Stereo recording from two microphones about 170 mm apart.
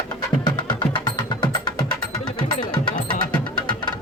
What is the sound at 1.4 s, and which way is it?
Music, 25° left (ahead or behind).